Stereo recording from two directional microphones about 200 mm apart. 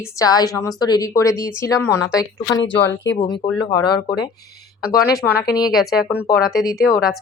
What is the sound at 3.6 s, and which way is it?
Speech, 20° left (ahead or behind).